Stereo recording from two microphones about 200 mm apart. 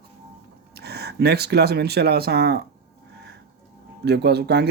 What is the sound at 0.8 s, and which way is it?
Speech, 55° right (ahead or behind).